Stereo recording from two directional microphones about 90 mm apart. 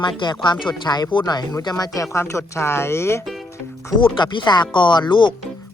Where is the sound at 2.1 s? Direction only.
30° left (ahead or behind).